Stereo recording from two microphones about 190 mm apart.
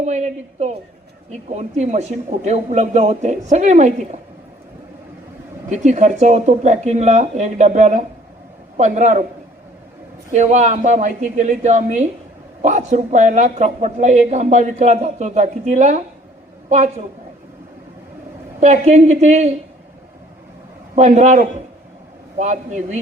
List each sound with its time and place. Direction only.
0.0 s speech: 35° right (ahead or behind)
5.6 s speech: 40° right (ahead or behind)
10.3 s a woman's voice: 40° right (ahead or behind)
18.6 s speech: 35° right (ahead or behind)
20.9 s speech: 40° right (ahead or behind)